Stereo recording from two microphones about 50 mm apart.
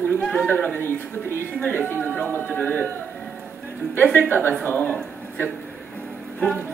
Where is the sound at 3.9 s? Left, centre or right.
Left.